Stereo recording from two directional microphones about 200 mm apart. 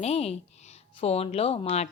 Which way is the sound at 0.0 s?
30° left (ahead or behind).